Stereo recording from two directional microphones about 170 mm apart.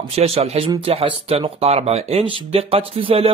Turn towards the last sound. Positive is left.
turn(degrees=-35)  # may be behind; listen again after turning